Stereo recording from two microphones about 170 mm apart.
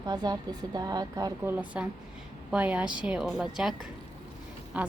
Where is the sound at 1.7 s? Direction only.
10° right (ahead or behind).